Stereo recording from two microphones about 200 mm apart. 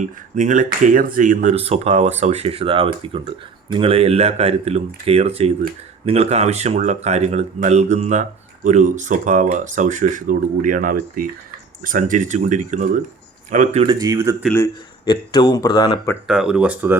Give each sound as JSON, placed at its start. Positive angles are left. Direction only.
{"t": 0.0, "sound": "speech", "side_deg": -40}
{"t": 13.8, "sound": "speech", "side_deg": -20}
{"t": 14.5, "sound": "speech", "side_deg": 15}
{"t": 16.2, "sound": "speech", "side_deg": -5}